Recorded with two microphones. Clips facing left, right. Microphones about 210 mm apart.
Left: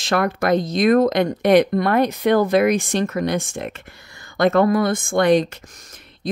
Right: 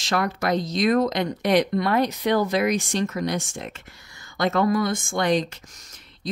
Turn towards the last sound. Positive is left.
turn(degrees=55)  # may be behind; listen again after turning